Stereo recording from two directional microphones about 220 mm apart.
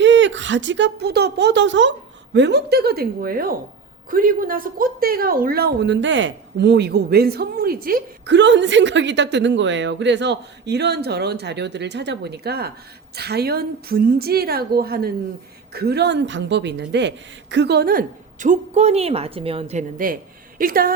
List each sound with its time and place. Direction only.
0.0 s a woman's voice: 55° right (ahead or behind)